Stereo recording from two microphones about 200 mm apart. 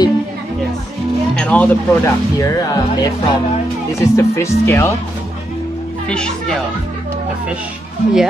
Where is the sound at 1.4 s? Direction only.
5° left (ahead or behind).